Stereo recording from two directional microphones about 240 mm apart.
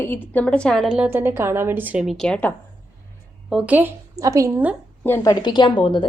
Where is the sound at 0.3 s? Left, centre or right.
Centre.